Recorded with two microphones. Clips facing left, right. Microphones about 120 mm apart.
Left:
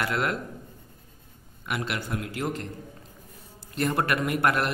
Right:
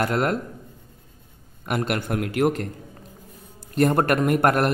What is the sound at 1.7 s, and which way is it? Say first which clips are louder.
A man's voice: right 6 dB; 50° right (ahead or behind).